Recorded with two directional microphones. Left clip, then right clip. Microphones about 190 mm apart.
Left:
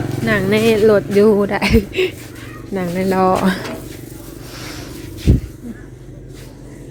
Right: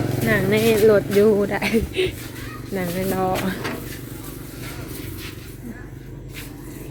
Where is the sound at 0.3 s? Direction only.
30° left (ahead or behind).